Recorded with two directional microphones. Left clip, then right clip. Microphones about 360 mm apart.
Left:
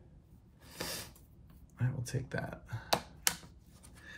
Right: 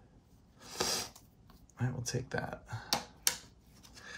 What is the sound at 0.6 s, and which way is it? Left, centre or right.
Snort, centre.